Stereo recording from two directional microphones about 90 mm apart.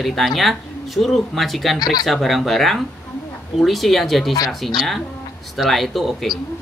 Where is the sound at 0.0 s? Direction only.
Centre (ahead or behind).